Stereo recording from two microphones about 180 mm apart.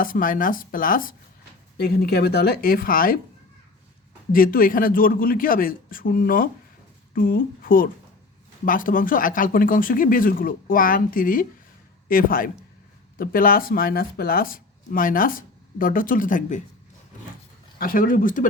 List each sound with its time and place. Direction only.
0.0 s a woman's voice: 50° left (ahead or behind)
4.3 s speech: 55° left (ahead or behind)
17.7 s speech: 50° left (ahead or behind)